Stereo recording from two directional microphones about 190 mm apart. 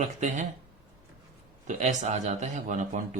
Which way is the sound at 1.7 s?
40° right (ahead or behind).